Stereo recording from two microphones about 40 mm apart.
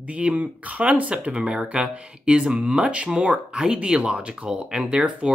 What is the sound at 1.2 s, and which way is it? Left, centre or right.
Speech, right.